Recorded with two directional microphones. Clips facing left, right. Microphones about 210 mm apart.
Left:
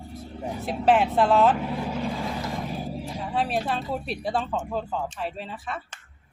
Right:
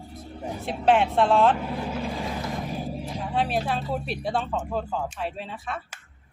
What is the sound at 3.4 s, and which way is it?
Speech, centre (ahead or behind).